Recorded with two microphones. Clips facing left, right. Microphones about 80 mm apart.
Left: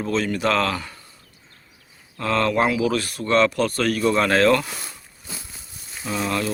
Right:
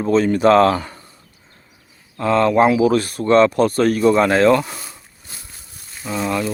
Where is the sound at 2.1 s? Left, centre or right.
Centre.